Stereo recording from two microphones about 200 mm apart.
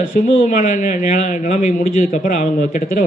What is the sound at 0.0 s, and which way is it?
Speech, 45° left (ahead or behind).